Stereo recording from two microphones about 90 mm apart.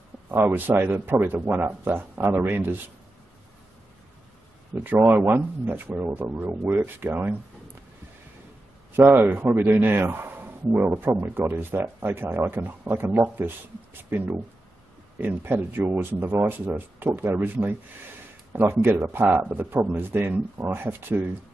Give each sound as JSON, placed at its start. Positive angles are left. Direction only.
{"t": 0.6, "sound": "a man's voice", "side_deg": -20}
{"t": 4.9, "sound": "a man's voice", "side_deg": -25}
{"t": 8.9, "sound": "a man's voice", "side_deg": -20}